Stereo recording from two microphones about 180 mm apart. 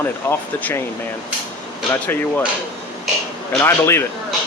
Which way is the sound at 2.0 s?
10° left (ahead or behind).